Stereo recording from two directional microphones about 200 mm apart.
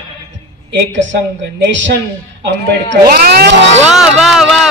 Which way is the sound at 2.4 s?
55° right (ahead or behind).